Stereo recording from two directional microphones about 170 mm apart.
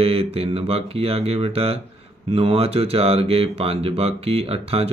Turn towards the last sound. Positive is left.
turn(degrees=-35)  # may be behind; listen again after turning